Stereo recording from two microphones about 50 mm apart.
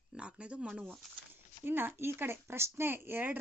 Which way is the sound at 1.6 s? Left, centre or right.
Right.